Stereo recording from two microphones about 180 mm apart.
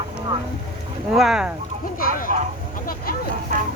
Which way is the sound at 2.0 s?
50° left (ahead or behind).